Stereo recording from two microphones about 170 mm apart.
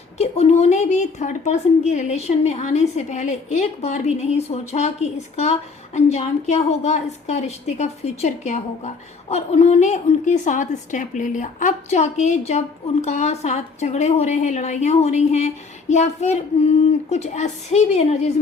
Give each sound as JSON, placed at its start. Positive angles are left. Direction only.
{"t": 0.2, "sound": "a woman's voice", "side_deg": 40}